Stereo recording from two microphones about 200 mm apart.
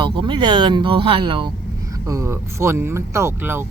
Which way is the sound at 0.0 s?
25° right (ahead or behind).